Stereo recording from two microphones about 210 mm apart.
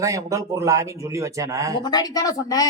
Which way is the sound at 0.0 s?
15° right (ahead or behind).